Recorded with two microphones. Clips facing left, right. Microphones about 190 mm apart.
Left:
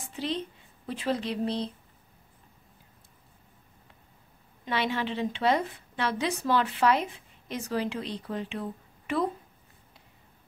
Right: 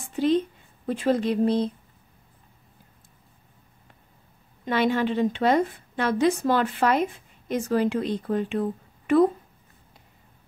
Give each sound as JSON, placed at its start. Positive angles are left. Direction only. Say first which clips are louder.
{"t": 0.1, "sound": "speech", "louder": "right 11 dB", "side_deg": -50}
{"t": 4.6, "sound": "a woman's voice", "louder": "right 7 dB", "side_deg": -45}